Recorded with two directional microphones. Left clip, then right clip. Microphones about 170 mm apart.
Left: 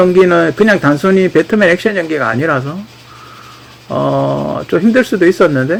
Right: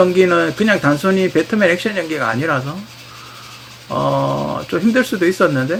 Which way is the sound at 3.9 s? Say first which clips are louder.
Left 3 dB; 35° left (ahead or behind).